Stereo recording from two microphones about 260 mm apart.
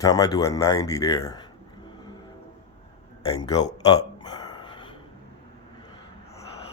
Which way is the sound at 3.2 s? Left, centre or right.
Centre.